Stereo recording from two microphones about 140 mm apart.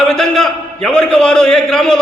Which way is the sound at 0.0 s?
5° left (ahead or behind).